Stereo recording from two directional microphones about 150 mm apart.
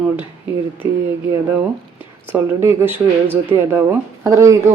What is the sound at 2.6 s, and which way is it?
Speech, 15° right (ahead or behind).